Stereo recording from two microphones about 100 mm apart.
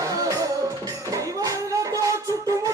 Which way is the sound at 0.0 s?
35° right (ahead or behind).